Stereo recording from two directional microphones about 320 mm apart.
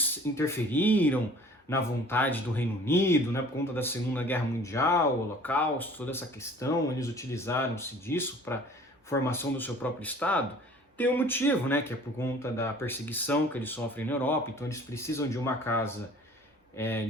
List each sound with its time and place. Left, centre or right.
0.0 s speech: centre